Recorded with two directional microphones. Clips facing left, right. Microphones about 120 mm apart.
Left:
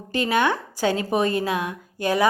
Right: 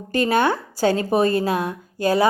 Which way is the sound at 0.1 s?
45° right (ahead or behind).